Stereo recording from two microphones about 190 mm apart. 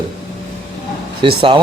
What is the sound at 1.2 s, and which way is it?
Speech, 25° right (ahead or behind).